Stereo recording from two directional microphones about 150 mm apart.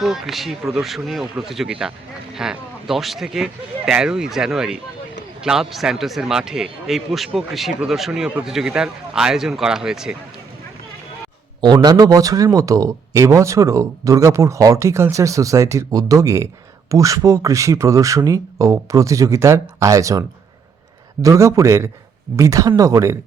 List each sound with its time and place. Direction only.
0.0 s a man's voice: centre (ahead or behind)
11.6 s speech: 30° right (ahead or behind)